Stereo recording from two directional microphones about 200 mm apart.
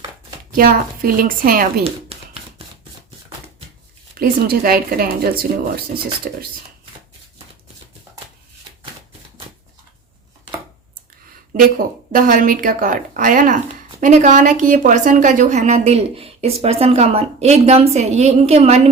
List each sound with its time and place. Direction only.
0.5 s speech: 45° right (ahead or behind)
1.8 s a sound: 30° right (ahead or behind)
4.2 s speech: 50° right (ahead or behind)
11.8 s a woman's voice: 45° right (ahead or behind)